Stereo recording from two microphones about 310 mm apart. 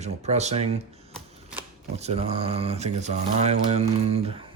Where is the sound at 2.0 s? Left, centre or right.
Centre.